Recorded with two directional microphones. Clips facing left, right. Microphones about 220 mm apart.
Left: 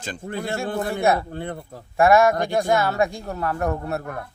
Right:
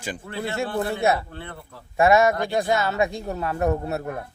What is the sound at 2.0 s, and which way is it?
Speech, 20° right (ahead or behind).